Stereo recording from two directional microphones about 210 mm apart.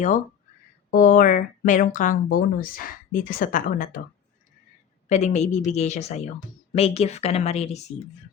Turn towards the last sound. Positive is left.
turn(degrees=30)  # may be behind; listen again after turning